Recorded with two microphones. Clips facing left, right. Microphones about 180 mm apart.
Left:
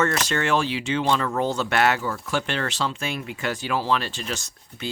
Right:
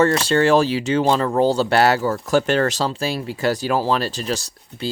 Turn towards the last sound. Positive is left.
turn(degrees=-35)  # may be behind; listen again after turning